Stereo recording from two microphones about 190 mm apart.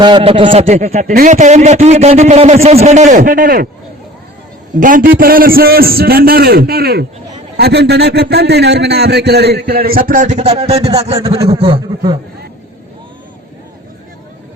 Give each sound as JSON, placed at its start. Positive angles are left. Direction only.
{"t": 0.0, "sound": "a man's voice", "side_deg": -25}
{"t": 4.8, "sound": "a man's voice", "side_deg": -45}